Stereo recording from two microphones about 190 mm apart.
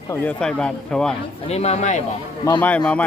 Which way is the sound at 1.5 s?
35° left (ahead or behind).